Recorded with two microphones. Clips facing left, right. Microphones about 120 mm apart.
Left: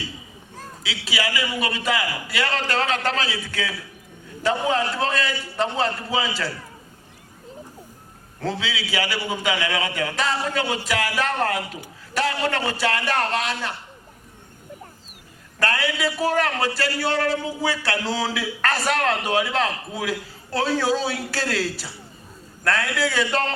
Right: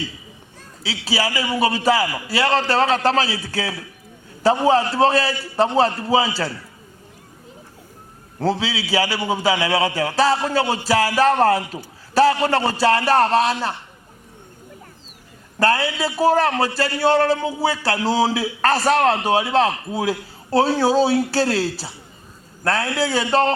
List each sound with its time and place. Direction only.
0.8 s a man's voice: 35° right (ahead or behind)
8.4 s a man's voice: 35° right (ahead or behind)
15.5 s a man's voice: 30° right (ahead or behind)